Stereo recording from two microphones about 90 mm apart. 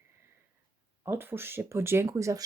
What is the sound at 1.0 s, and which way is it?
Speech, 25° right (ahead or behind).